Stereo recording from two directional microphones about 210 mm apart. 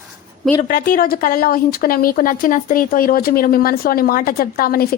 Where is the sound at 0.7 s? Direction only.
45° left (ahead or behind).